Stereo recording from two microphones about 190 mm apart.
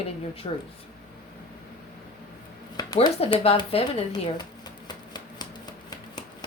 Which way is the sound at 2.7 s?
25° left (ahead or behind).